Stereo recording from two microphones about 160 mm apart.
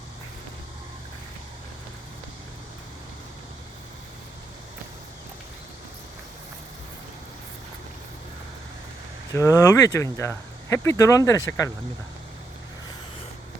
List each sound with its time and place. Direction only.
9.3 s speech: 20° left (ahead or behind)